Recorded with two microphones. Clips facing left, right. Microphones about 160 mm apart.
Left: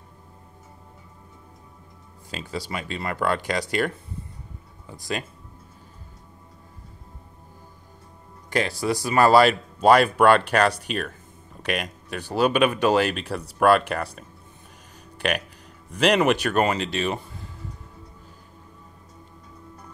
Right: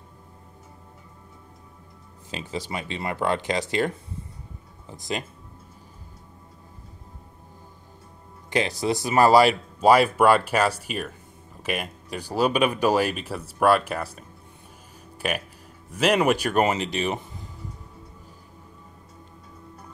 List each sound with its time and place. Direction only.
2.3 s speech: 20° right (ahead or behind)
8.5 s speech: 20° right (ahead or behind)
15.1 s speech: 5° right (ahead or behind)